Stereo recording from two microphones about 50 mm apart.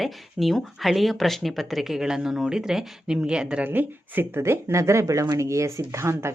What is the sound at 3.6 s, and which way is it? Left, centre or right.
Speech, right.